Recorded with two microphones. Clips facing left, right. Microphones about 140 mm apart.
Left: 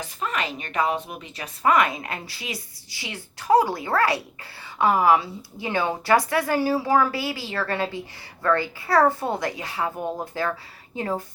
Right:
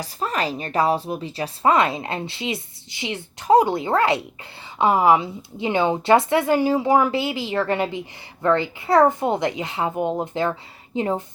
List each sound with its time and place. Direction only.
0.0 s a woman's voice: 35° right (ahead or behind)